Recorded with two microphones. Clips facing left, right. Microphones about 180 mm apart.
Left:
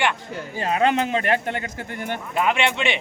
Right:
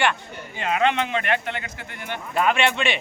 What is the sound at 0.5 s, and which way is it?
Speech, 35° left (ahead or behind).